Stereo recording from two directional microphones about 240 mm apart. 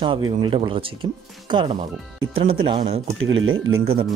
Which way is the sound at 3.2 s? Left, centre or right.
Right.